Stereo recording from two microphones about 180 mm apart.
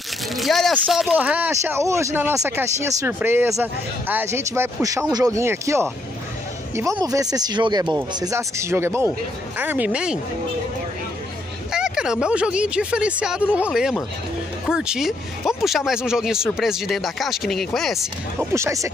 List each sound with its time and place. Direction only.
0.4 s speech: centre (ahead or behind)
11.7 s speech: 5° right (ahead or behind)
18.5 s speech: 15° right (ahead or behind)